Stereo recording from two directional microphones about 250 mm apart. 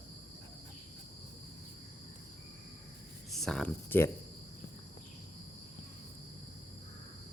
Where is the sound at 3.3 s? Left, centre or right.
Centre.